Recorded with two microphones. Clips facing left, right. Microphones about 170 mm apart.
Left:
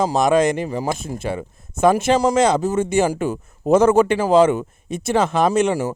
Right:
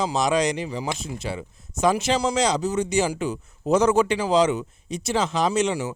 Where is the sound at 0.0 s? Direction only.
50° left (ahead or behind).